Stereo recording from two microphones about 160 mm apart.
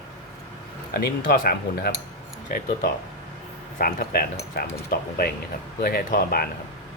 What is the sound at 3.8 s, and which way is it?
Speech, 60° left (ahead or behind).